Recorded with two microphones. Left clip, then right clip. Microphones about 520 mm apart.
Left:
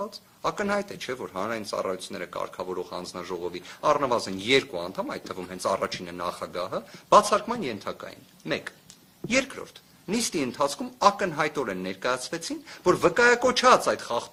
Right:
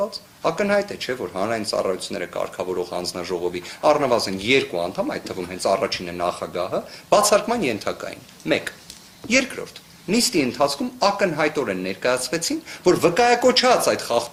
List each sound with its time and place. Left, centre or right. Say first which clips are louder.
0.1 s speech: right 6 dB; left
10.1 s speech: right 8 dB; left